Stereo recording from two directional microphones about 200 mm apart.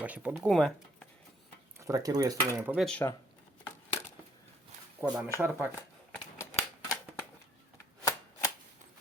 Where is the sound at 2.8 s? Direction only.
5° left (ahead or behind).